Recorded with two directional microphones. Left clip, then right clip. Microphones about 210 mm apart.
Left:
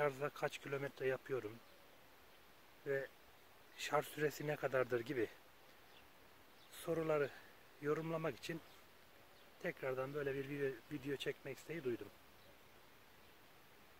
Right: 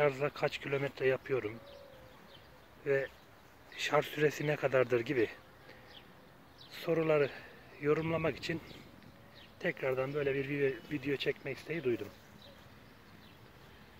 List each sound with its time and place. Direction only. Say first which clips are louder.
0.0 s speech: right 8 dB; 15° left (ahead or behind)
2.8 s speech: right 9 dB; 10° left (ahead or behind)
6.7 s speech: right 8 dB; 20° left (ahead or behind)
9.6 s speech: right 9 dB; 15° left (ahead or behind)